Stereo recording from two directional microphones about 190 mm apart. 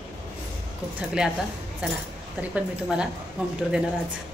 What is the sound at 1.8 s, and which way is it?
A woman's voice, 5° right (ahead or behind).